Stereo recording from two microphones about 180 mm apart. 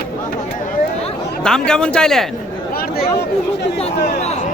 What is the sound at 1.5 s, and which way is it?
Speech, 5° left (ahead or behind).